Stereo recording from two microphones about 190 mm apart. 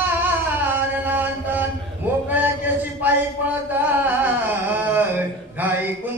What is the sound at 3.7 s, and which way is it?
Singing, 10° right (ahead or behind).